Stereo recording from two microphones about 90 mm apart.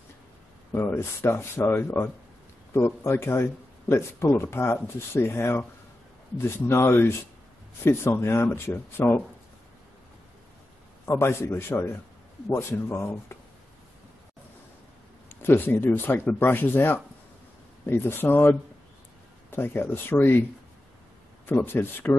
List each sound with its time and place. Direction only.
0.7 s speech: 25° left (ahead or behind)
11.1 s speech: 30° left (ahead or behind)
15.2 s speech: 25° left (ahead or behind)
21.5 s speech: 25° left (ahead or behind)